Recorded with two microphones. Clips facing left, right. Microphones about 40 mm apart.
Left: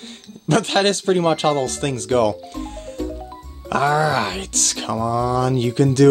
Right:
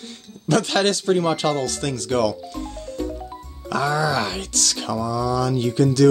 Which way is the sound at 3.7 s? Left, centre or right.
Left.